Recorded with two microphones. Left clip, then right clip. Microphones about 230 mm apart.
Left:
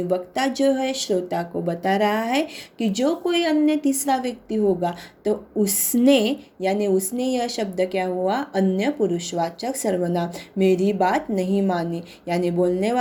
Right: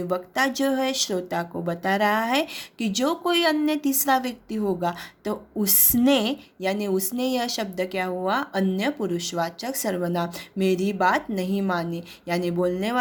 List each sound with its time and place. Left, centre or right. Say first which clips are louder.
0.1 s speech: right 1 dB; centre